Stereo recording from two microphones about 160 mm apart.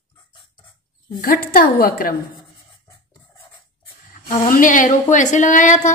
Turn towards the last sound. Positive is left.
turn(degrees=50)  # may be behind; listen again after turning